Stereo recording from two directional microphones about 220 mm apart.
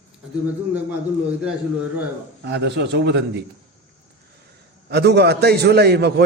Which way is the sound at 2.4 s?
50° right (ahead or behind).